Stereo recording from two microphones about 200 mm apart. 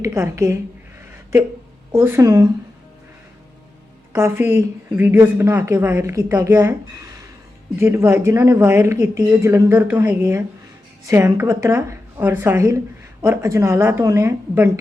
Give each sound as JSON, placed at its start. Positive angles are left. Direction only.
{"t": 0.0, "sound": "speech", "side_deg": -15}
{"t": 1.9, "sound": "speech", "side_deg": -10}
{"t": 4.1, "sound": "speech", "side_deg": -10}
{"t": 7.8, "sound": "speech", "side_deg": -10}